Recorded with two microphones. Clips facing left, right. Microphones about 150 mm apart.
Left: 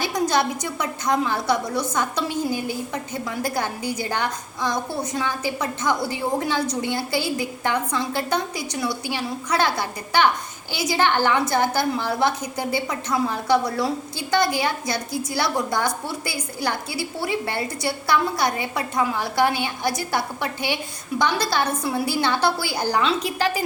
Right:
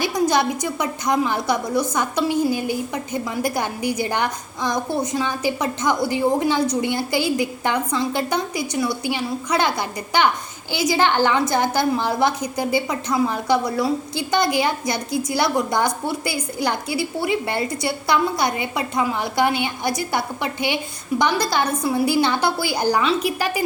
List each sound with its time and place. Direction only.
0.0 s a woman's voice: 15° right (ahead or behind)